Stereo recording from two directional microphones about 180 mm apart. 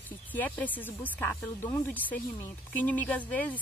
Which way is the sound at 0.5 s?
10° left (ahead or behind).